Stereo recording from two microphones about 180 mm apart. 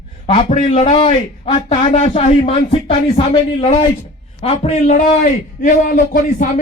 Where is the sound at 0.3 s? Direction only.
35° left (ahead or behind).